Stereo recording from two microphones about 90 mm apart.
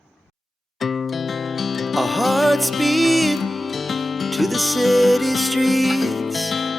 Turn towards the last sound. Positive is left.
turn(degrees=0)  # may be behind; listen again after turning